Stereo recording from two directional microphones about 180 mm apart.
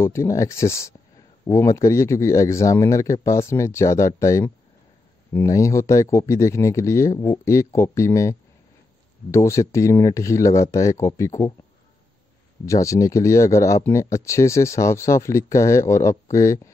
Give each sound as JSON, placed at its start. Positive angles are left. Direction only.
{"t": 0.0, "sound": "speech", "side_deg": 15}
{"t": 12.6, "sound": "speech", "side_deg": 15}